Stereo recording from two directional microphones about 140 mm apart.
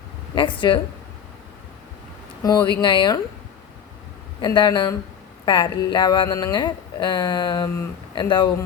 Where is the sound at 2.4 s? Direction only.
30° left (ahead or behind).